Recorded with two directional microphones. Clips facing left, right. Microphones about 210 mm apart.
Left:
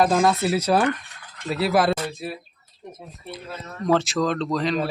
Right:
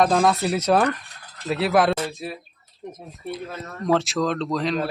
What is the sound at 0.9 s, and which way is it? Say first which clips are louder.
Fowl: left 1 dB; 35° right (ahead or behind).